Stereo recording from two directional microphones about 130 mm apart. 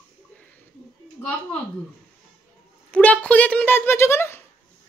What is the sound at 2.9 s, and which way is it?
Speech, 10° left (ahead or behind).